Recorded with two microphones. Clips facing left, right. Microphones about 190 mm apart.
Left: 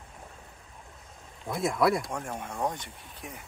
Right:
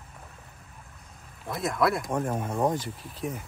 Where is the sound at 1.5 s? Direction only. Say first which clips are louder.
Left 1 dB; centre (ahead or behind).